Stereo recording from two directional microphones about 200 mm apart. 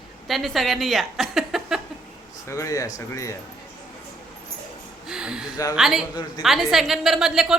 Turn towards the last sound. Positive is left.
turn(degrees=0)  # may be behind; listen again after turning